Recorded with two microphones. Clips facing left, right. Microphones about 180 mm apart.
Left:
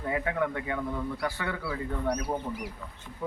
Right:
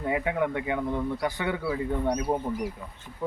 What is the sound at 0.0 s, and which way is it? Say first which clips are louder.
Speech: right 3 dB; 10° right (ahead or behind).